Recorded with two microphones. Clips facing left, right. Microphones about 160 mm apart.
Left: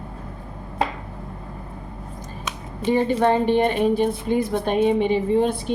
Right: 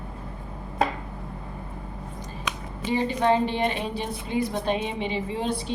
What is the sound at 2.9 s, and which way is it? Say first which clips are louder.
A woman's voice: left 4 dB; 50° left (ahead or behind).